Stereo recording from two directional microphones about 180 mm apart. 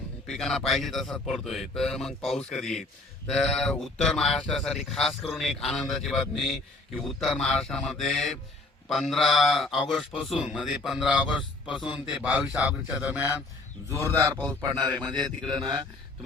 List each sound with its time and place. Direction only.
0.3 s a man's voice: centre (ahead or behind); by 15.6 s 25° right (ahead or behind)